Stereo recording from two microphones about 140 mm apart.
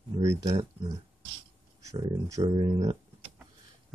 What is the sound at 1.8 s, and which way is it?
Speech, 25° right (ahead or behind).